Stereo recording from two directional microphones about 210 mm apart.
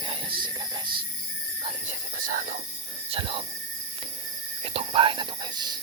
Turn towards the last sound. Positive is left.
turn(degrees=-20)  # may be behind; listen again after turning